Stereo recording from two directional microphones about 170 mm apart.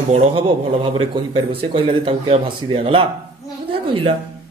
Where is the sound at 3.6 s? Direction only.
30° right (ahead or behind).